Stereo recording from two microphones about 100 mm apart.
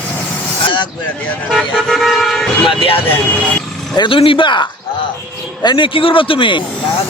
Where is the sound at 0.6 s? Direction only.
55° left (ahead or behind).